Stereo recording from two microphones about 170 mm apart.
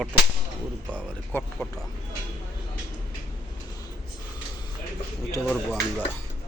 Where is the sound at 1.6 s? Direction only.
10° left (ahead or behind).